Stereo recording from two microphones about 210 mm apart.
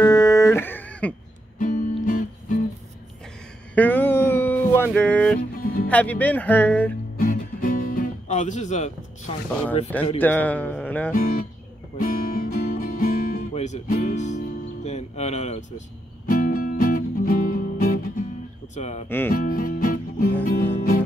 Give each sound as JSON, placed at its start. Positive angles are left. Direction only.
{"t": 0.0, "sound": "a sound", "side_deg": 15}
{"t": 1.6, "sound": "music", "side_deg": 40}
{"t": 3.7, "sound": "a sound", "side_deg": 10}
{"t": 5.6, "sound": "music", "side_deg": 45}
{"t": 5.9, "sound": "speech", "side_deg": 5}
{"t": 7.2, "sound": "music", "side_deg": 40}
{"t": 10.2, "sound": "speech", "side_deg": 10}
{"t": 12.0, "sound": "guitar", "side_deg": 45}
{"t": 16.3, "sound": "music", "side_deg": 40}
{"t": 18.8, "sound": "speech", "side_deg": 30}
{"t": 19.0, "sound": "speech", "side_deg": 10}
{"t": 19.4, "sound": "music", "side_deg": 40}